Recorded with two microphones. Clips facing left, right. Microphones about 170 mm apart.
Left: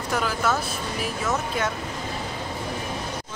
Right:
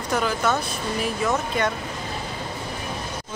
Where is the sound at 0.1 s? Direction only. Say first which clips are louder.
Right 2 dB; centre (ahead or behind).